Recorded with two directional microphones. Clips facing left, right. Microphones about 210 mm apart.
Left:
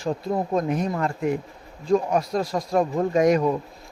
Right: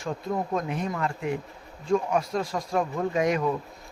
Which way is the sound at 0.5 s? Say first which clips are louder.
Left 5 dB; 40° left (ahead or behind).